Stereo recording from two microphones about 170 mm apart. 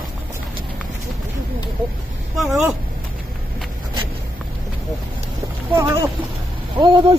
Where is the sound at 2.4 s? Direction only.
Centre (ahead or behind).